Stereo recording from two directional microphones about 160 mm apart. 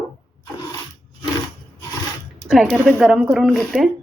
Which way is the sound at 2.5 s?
Centre (ahead or behind).